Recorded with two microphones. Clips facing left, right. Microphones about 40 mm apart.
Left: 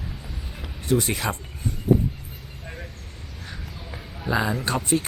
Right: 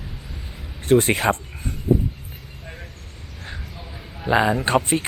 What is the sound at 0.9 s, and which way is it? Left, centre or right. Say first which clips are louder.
Speech: right 7 dB; right.